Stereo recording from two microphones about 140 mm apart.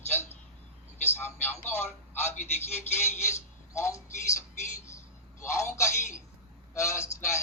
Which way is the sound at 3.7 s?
20° left (ahead or behind).